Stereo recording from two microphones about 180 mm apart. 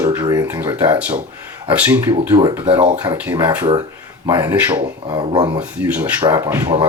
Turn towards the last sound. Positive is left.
turn(degrees=-25)  # may be behind; listen again after turning